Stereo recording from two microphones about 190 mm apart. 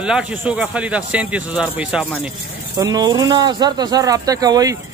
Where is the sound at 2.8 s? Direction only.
20° right (ahead or behind).